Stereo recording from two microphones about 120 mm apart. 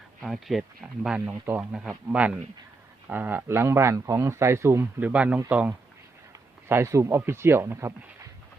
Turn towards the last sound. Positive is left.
turn(degrees=-20)  # may be behind; listen again after turning